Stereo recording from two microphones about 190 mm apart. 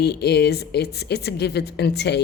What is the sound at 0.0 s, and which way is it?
A woman's voice, 60° left (ahead or behind).